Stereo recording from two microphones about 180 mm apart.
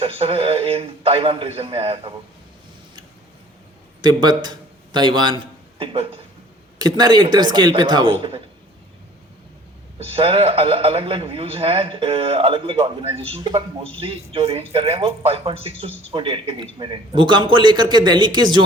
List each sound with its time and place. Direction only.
0.0 s a man's voice: 30° right (ahead or behind)
4.0 s a man's voice: 25° right (ahead or behind)
10.0 s a man's voice: 30° right (ahead or behind)